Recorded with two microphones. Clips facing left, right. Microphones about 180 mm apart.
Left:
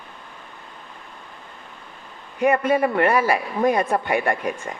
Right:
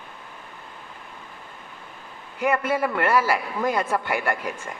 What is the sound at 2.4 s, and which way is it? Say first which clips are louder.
A man's voice: left 4 dB; 30° left (ahead or behind).